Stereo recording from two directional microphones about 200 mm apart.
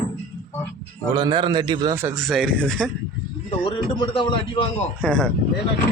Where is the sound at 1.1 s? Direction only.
25° right (ahead or behind).